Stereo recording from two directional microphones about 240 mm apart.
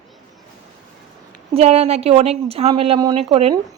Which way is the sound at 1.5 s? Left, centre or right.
Right.